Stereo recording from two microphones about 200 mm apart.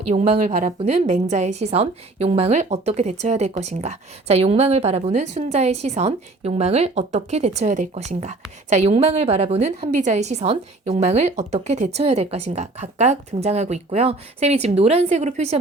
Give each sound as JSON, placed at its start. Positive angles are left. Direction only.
{"t": 0.1, "sound": "a woman's voice", "side_deg": -35}